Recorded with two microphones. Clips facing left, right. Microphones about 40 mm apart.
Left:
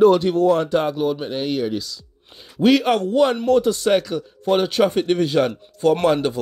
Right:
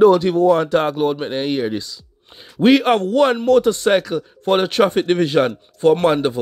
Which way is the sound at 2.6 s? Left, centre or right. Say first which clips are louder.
Right 3 dB; right.